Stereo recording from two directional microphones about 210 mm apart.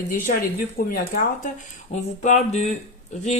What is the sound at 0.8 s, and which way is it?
Speech, 45° left (ahead or behind).